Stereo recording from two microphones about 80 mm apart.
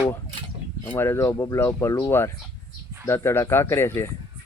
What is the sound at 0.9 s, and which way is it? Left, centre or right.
Speech, left.